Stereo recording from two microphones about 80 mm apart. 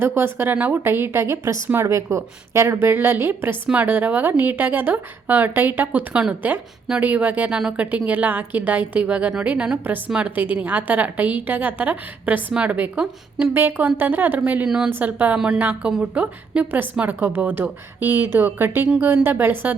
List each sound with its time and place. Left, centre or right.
0.0 s a woman's voice: right